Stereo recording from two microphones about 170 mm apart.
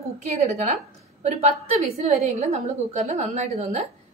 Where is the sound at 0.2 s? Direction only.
40° right (ahead or behind).